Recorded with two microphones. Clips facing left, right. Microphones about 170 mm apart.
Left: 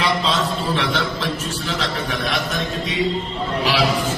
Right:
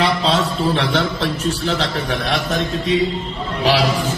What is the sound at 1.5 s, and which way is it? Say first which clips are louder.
A man's voice: right 5 dB; 30° right (ahead or behind).